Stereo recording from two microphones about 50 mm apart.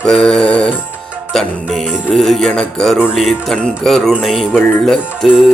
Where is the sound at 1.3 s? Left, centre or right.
Centre.